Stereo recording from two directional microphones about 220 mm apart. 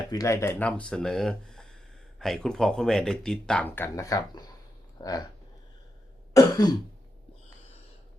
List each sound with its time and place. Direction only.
0.1 s speech: 15° left (ahead or behind)
6.3 s throat clearing: 20° left (ahead or behind)